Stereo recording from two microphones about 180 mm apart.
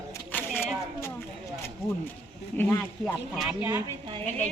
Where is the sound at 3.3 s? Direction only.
5° right (ahead or behind).